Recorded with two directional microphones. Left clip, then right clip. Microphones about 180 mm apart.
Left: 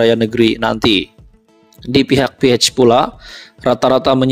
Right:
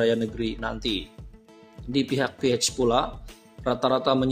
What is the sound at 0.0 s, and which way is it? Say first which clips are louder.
A man's voice: left 12 dB; 50° left (ahead or behind).